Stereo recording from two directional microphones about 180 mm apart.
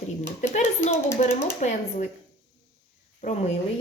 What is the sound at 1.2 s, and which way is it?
Speech, 45° left (ahead or behind).